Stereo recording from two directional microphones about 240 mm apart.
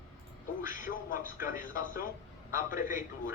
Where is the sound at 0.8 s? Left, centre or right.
Left.